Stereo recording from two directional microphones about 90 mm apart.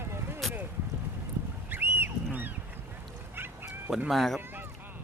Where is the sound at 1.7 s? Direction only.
25° right (ahead or behind).